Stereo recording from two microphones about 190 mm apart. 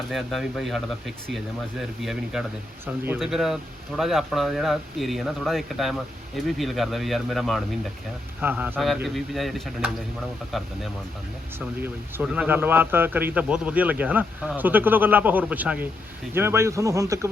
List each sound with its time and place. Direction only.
0.1 s a man's voice: centre (ahead or behind)
11.8 s a man's voice: 10° right (ahead or behind)